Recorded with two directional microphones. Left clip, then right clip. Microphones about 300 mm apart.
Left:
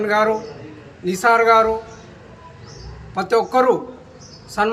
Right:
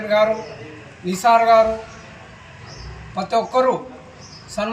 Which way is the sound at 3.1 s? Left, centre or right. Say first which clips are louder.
Left 2 dB; centre.